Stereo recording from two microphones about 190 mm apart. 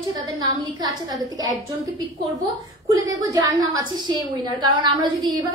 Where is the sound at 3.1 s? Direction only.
20° right (ahead or behind).